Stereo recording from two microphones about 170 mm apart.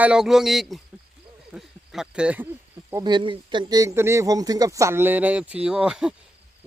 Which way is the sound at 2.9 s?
25° right (ahead or behind).